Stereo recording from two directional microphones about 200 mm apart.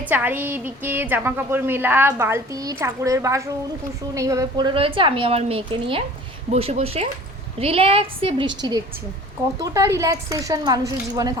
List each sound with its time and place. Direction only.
0.1 s a woman's voice: 10° right (ahead or behind); by 8.4 s 25° right (ahead or behind)
9.6 s a woman's voice: 15° right (ahead or behind)